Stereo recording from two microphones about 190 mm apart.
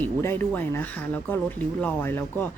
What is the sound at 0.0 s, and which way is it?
Speech, 10° left (ahead or behind).